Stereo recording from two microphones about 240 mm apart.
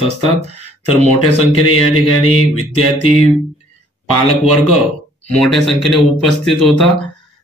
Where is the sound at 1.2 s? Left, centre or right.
Left.